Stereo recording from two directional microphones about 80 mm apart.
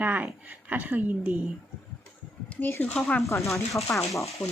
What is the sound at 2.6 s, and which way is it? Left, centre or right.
Speech, left.